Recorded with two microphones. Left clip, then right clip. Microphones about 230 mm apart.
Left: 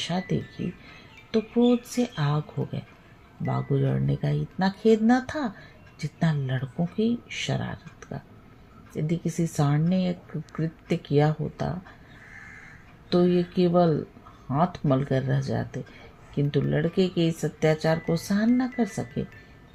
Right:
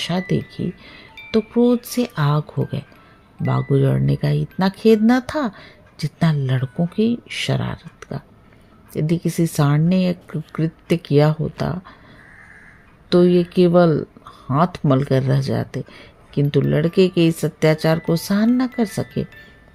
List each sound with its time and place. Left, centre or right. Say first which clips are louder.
0.0 s speech: right 7 dB; right
13.1 s speech: right 8 dB; right